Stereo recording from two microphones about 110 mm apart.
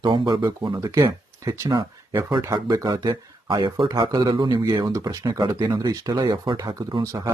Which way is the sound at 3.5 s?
45° right (ahead or behind).